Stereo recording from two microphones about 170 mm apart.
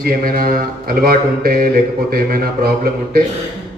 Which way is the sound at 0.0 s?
60° right (ahead or behind).